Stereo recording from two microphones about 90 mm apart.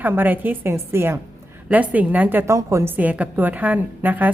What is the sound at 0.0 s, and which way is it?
A woman's voice, 20° right (ahead or behind).